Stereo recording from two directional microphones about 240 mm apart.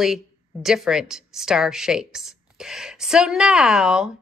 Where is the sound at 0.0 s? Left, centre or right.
Centre.